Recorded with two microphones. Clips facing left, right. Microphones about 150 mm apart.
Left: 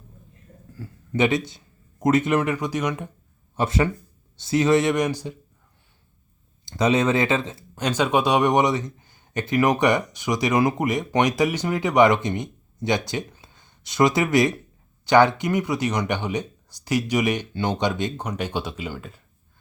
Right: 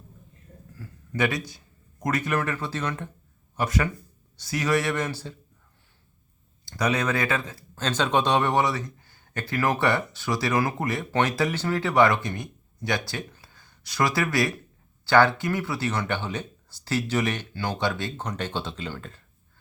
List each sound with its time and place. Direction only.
0.8 s speech: 20° left (ahead or behind)
3.5 s a man's voice: 25° left (ahead or behind)
6.7 s a man's voice: 25° left (ahead or behind)
7.9 s a man's voice: 10° left (ahead or behind)